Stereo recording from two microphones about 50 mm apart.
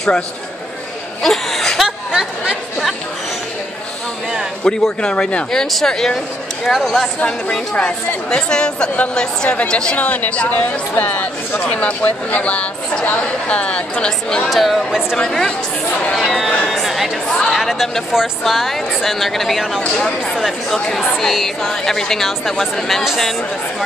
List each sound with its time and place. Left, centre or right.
1.2 s a sound: centre
4.6 s speech: centre
6.7 s speech: centre
7.2 s speech: centre
9.9 s a woman's voice: left; by 14.5 s centre
14.5 s speech: centre
15.1 s speech: centre
16.6 s a sound: centre
17.5 s speech: centre
19.8 s speech: centre
20.3 s speech: centre